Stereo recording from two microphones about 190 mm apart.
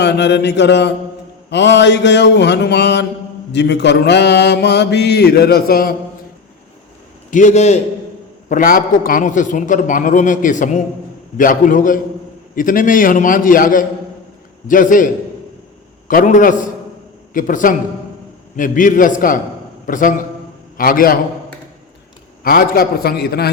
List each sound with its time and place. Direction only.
0.0 s mantra: 65° left (ahead or behind)
7.3 s a man's voice: 40° left (ahead or behind)
22.4 s a man's voice: 50° left (ahead or behind)